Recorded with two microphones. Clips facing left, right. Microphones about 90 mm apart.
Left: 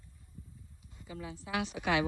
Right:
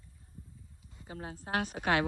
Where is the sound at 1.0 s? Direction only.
40° right (ahead or behind).